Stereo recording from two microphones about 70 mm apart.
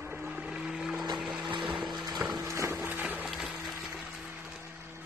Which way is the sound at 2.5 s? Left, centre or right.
Right.